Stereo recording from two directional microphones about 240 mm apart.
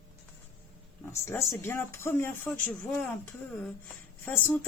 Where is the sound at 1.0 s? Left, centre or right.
Centre.